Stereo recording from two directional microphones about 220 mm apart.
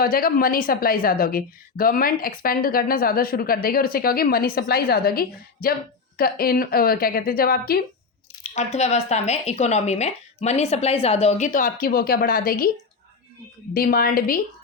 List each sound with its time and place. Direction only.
0.0 s a woman's voice: 40° left (ahead or behind)
8.4 s a woman's voice: 30° left (ahead or behind)
13.7 s a woman's voice: 40° left (ahead or behind)